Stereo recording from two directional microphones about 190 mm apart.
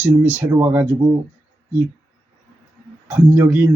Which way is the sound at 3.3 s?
10° right (ahead or behind).